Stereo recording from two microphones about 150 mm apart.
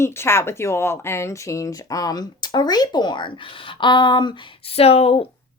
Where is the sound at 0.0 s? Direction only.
15° left (ahead or behind); by 5.3 s 40° left (ahead or behind).